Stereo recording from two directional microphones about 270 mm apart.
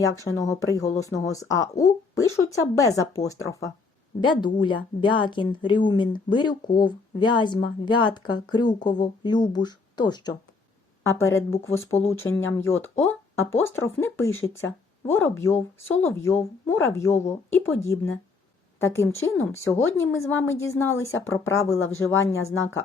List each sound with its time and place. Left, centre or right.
0.0 s a woman's voice: centre